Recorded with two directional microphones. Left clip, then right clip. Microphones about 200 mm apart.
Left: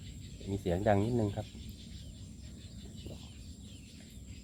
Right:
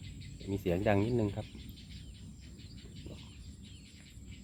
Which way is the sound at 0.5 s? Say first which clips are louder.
Left 1 dB; 15° right (ahead or behind).